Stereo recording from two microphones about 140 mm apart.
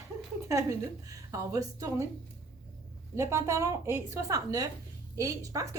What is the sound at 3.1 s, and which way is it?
A woman's voice, 20° right (ahead or behind).